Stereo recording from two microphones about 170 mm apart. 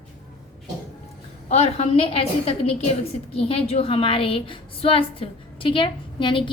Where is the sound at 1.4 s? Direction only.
40° left (ahead or behind).